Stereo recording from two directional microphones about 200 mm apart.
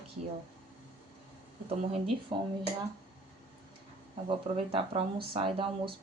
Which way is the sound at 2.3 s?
25° right (ahead or behind).